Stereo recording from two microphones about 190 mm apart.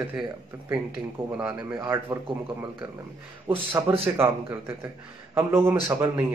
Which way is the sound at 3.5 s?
10° right (ahead or behind).